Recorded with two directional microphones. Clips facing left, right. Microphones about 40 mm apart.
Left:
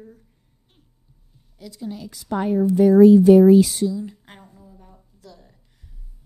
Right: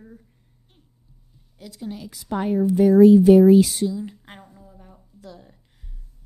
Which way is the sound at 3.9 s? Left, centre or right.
Right.